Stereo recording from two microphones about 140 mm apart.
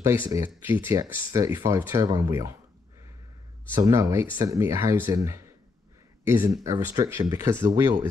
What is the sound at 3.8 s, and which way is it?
Speech, 20° right (ahead or behind).